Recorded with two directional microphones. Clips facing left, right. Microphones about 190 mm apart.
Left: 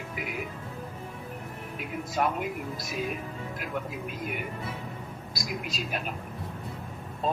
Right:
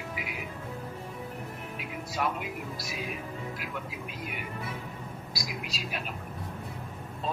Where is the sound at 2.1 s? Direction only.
50° left (ahead or behind).